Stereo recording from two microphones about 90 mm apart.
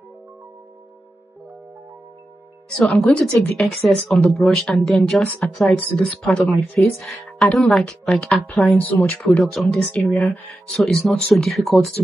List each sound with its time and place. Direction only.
2.8 s speech: centre (ahead or behind)
3.2 s speech: 15° left (ahead or behind)
3.6 s speech: centre (ahead or behind)
9.4 s speech: centre (ahead or behind)
9.7 s speech: 10° left (ahead or behind)